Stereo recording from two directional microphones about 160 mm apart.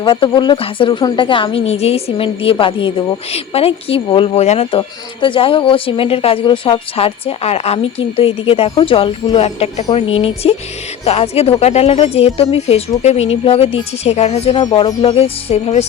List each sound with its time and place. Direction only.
0.0 s a woman's voice: 30° left (ahead or behind)
15.0 s a woman's voice: 40° left (ahead or behind)